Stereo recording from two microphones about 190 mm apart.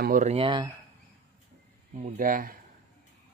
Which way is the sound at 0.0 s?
45° right (ahead or behind).